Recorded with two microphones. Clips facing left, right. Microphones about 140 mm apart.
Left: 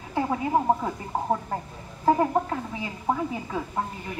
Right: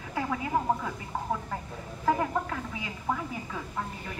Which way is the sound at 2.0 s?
30° left (ahead or behind).